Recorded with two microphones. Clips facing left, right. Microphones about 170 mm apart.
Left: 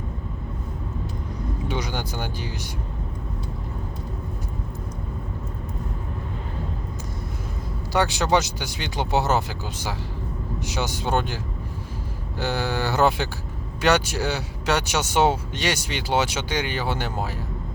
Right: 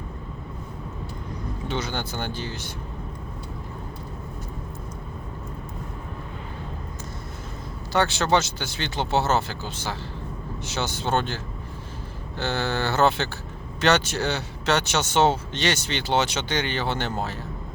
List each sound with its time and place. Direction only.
1.6 s speech: 15° left (ahead or behind)
7.9 s speech: 15° left (ahead or behind)
12.4 s speech: 10° left (ahead or behind)